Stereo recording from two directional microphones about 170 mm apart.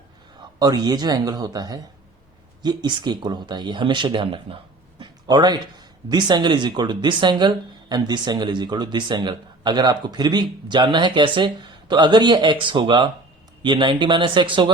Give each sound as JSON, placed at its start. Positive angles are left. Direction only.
{"t": 0.6, "sound": "speech", "side_deg": -25}